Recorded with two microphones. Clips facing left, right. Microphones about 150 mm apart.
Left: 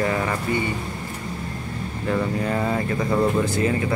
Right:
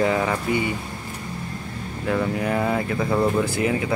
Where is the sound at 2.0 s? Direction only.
Centre (ahead or behind).